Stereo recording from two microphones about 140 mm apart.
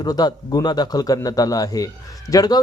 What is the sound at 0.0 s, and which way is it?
Speech, 30° left (ahead or behind).